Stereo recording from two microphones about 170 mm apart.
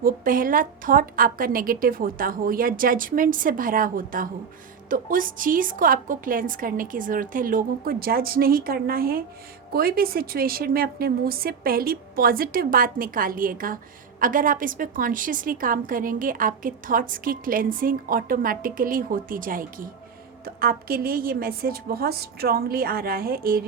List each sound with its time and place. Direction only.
0.0 s a woman's voice: 55° right (ahead or behind)